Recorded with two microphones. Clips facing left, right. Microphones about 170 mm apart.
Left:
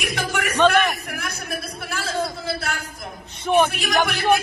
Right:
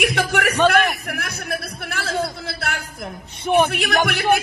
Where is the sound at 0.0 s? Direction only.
65° right (ahead or behind).